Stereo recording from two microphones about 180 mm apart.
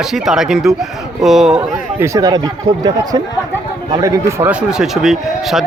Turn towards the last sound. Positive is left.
turn(degrees=0)  # may be behind; listen again after turning